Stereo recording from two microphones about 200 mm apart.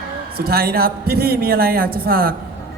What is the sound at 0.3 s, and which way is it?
A woman's voice, 50° right (ahead or behind).